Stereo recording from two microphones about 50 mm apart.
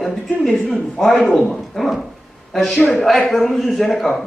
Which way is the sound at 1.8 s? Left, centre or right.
Centre.